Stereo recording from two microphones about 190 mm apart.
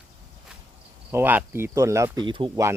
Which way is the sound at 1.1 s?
10° right (ahead or behind).